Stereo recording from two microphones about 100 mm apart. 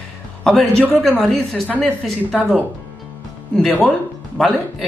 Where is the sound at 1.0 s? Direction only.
5° left (ahead or behind).